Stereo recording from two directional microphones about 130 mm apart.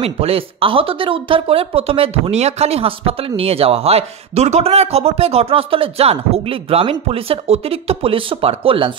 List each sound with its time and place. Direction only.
0.0 s speech: 50° right (ahead or behind)